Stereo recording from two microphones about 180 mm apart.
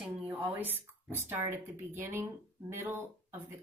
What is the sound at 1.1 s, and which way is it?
Speech, 15° right (ahead or behind).